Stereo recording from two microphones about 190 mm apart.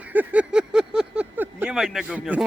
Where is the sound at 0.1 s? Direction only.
10° right (ahead or behind).